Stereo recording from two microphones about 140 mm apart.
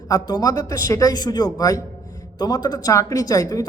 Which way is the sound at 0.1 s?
25° left (ahead or behind).